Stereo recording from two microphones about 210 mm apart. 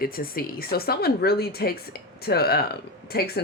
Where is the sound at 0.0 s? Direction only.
45° left (ahead or behind).